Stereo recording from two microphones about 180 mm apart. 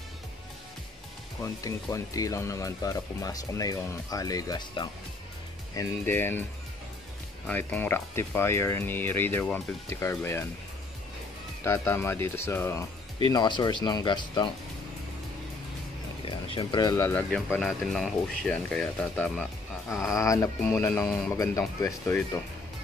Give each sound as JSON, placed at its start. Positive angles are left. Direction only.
{"t": 1.4, "sound": "speech", "side_deg": 15}
{"t": 5.8, "sound": "speech", "side_deg": 10}
{"t": 7.4, "sound": "speech", "side_deg": 10}
{"t": 11.6, "sound": "speech", "side_deg": 15}
{"t": 13.3, "sound": "speech", "side_deg": 25}
{"t": 16.3, "sound": "speech", "side_deg": 25}
{"t": 17.3, "sound": "speech", "side_deg": 5}
{"t": 20.2, "sound": "speech", "side_deg": 15}